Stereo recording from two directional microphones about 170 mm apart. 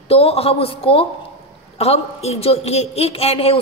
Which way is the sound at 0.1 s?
35° left (ahead or behind).